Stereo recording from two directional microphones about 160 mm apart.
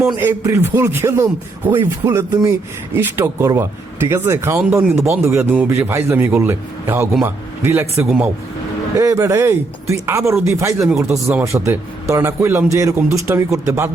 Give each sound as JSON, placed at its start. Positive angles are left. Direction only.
{"t": 0.2, "sound": "a man's voice", "side_deg": -15}
{"t": 8.0, "sound": "speech", "side_deg": 0}
{"t": 9.0, "sound": "speech", "side_deg": -20}
{"t": 10.9, "sound": "speech", "side_deg": -5}
{"t": 11.4, "sound": "speech", "side_deg": -15}